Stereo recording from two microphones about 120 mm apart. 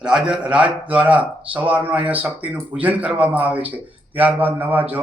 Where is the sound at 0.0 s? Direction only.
5° right (ahead or behind).